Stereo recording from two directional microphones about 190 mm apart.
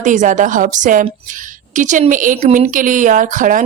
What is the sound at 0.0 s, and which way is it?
A woman's voice, 40° right (ahead or behind).